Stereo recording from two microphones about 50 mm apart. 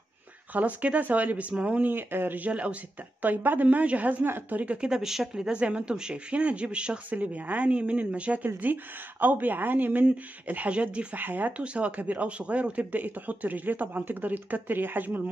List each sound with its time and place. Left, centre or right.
0.5 s speech: right
4.2 s speech: right
4.7 s speech: centre
7.1 s speech: right
11.1 s speech: right
11.6 s speech: right